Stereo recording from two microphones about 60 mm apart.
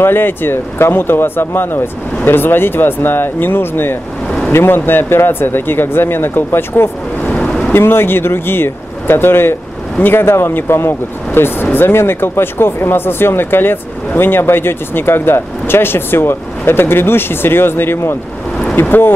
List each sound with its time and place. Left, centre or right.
0.0 s speech: left